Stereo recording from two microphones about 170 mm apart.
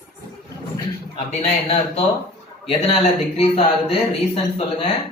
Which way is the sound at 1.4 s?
40° left (ahead or behind).